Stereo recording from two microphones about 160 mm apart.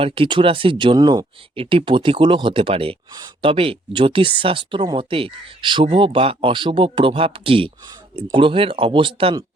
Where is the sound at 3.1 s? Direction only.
25° right (ahead or behind).